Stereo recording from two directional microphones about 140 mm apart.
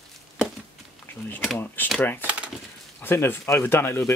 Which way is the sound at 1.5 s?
15° left (ahead or behind).